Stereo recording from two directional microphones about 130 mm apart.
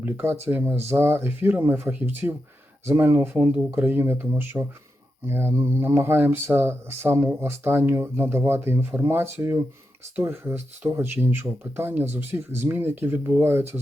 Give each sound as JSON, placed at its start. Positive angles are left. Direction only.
{"t": 0.0, "sound": "speech", "side_deg": -15}